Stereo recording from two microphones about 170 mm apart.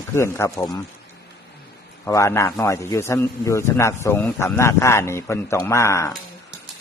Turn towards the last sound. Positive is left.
turn(degrees=15)  # may be behind; listen again after turning